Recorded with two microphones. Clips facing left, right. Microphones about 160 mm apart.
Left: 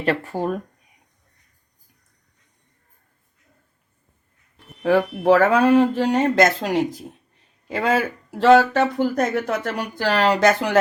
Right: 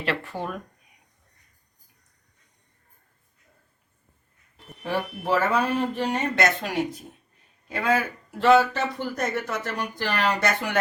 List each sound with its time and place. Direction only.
0.0 s speech: 45° left (ahead or behind)
4.8 s speech: 90° left